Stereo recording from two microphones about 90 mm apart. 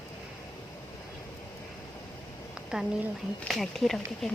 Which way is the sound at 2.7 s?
10° right (ahead or behind).